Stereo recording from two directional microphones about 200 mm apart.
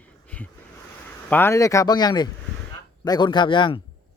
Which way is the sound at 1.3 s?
10° left (ahead or behind).